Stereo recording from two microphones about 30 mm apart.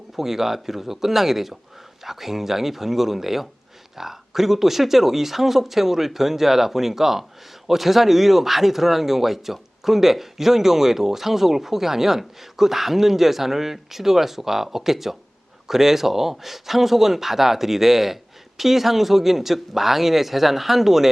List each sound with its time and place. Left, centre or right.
0.2 s speech: centre